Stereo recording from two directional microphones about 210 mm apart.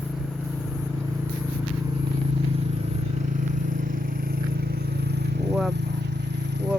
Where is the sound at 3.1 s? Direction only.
35° right (ahead or behind); by 6.7 s 55° right (ahead or behind).